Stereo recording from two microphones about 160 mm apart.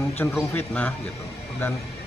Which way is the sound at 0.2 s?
15° left (ahead or behind).